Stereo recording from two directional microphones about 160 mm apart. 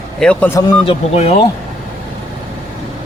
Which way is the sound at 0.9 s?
40° left (ahead or behind).